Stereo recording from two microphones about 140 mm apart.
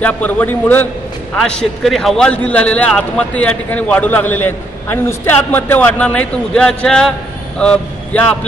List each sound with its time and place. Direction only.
0.0 s a man's voice: 10° left (ahead or behind)